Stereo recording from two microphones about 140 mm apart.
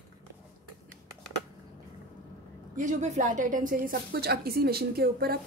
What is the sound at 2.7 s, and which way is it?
A woman's voice, 60° right (ahead or behind).